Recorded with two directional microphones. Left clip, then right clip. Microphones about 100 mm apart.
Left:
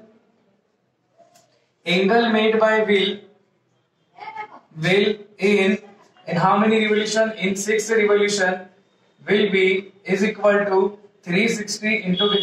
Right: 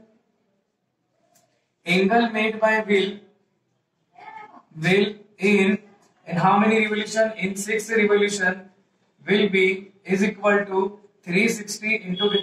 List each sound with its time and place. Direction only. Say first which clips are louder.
2.0 s speech: left 6 dB; 35° left (ahead or behind)
4.2 s a sound: left 7 dB; 30° left (ahead or behind)
6.2 s a man's voice: left 1 dB; 30° left (ahead or behind)